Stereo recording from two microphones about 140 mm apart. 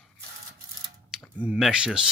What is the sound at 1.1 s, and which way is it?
Speech, 5° right (ahead or behind).